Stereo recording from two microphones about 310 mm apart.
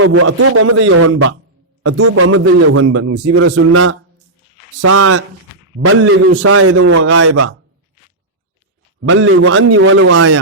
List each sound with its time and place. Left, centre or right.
0.0 s a man's voice: right
9.0 s a man's voice: right